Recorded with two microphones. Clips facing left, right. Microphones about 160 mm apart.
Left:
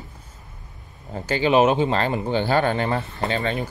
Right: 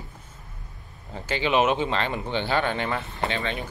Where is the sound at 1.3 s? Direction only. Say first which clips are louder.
Left 5 dB; 40° left (ahead or behind).